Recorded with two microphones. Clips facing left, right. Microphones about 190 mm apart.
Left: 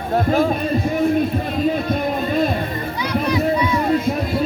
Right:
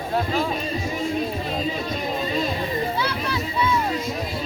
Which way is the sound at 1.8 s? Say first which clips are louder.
Left 6 dB; 55° left (ahead or behind).